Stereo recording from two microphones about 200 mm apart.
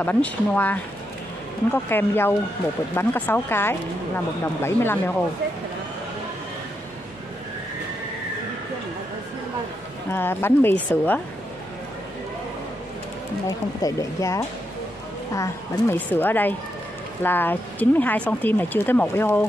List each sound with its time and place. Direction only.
0.0 s speech: 10° left (ahead or behind)
10.1 s speech: 10° left (ahead or behind)
13.5 s speech: 15° left (ahead or behind)